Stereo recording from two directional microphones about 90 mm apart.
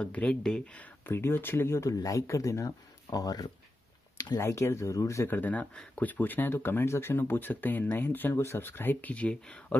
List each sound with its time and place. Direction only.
0.0 s speech: 15° left (ahead or behind)
1.0 s speech: 25° left (ahead or behind); by 3.4 s 45° left (ahead or behind)
4.4 s speech: 30° left (ahead or behind); by 9.8 s 15° left (ahead or behind)